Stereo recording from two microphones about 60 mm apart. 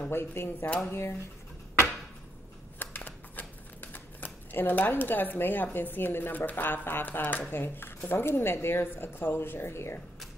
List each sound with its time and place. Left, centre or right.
0.1 s a woman's voice: left
2.8 s a woman's voice: left